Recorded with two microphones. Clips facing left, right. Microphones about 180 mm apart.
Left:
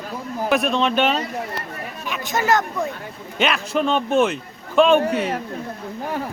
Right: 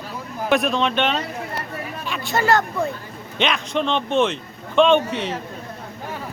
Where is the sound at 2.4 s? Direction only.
5° left (ahead or behind).